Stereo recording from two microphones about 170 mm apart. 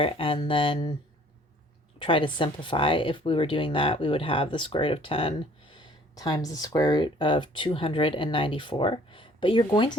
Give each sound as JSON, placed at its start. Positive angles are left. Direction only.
{"t": 0.0, "sound": "speech", "side_deg": 30}
{"t": 2.0, "sound": "speech", "side_deg": 30}